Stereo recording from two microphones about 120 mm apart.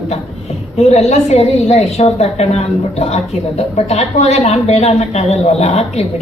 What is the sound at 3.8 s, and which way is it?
Speech, 70° left (ahead or behind).